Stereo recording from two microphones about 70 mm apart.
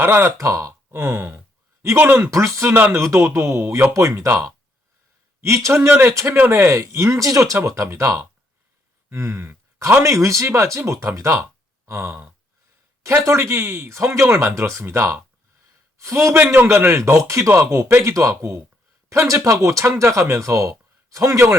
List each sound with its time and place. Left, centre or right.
0.0 s speech: right
5.6 s speech: right
7.5 s speech: right
11.9 s gasp: right
13.0 s speech: right